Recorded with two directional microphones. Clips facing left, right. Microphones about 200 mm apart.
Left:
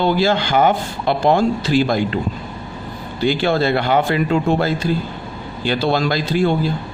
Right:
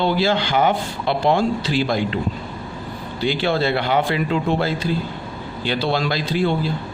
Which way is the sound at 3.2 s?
45° left (ahead or behind).